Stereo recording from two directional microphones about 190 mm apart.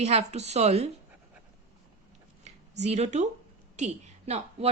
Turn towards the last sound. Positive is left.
turn(degrees=-35)  # may be behind; listen again after turning